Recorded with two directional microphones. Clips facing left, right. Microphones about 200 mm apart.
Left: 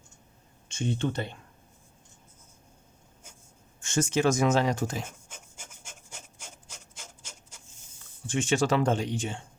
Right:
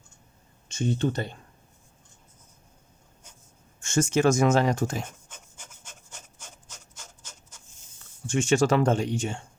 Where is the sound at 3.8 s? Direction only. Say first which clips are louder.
Right 3 dB; 50° right (ahead or behind).